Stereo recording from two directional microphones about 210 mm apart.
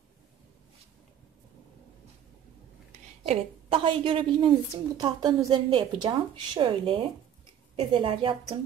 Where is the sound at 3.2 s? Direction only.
25° right (ahead or behind).